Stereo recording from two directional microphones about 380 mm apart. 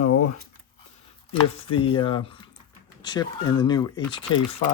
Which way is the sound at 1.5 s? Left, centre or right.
Centre.